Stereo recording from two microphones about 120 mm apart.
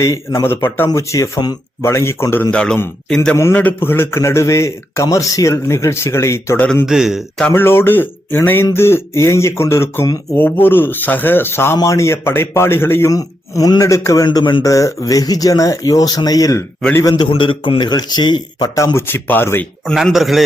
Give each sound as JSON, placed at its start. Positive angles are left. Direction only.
{"t": 0.0, "sound": "a man's voice", "side_deg": 30}
{"t": 1.8, "sound": "a man's voice", "side_deg": 20}
{"t": 2.5, "sound": "speech", "side_deg": 10}
{"t": 3.3, "sound": "a man's voice", "side_deg": 20}
{"t": 6.8, "sound": "a man's voice", "side_deg": -5}
{"t": 7.4, "sound": "a man's voice", "side_deg": 20}
{"t": 13.1, "sound": "a man's voice", "side_deg": 30}
{"t": 14.3, "sound": "a man's voice", "side_deg": 40}
{"t": 17.2, "sound": "speech", "side_deg": 45}
{"t": 19.8, "sound": "a man's voice", "side_deg": 5}